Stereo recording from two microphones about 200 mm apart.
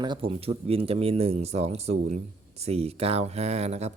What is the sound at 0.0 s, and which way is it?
Speech, 25° right (ahead or behind).